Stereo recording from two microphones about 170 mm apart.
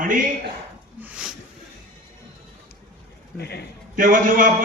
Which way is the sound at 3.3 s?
70° left (ahead or behind).